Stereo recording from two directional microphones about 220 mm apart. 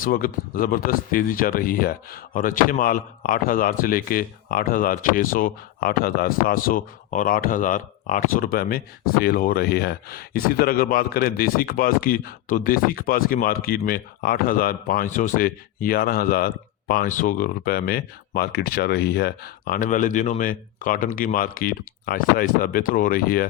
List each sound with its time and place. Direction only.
0.0 s speech: 40° left (ahead or behind)